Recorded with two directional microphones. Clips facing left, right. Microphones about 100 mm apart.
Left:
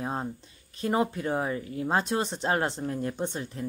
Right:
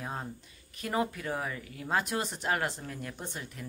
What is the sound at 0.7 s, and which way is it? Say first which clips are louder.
A woman's voice: left 5 dB; 25° left (ahead or behind).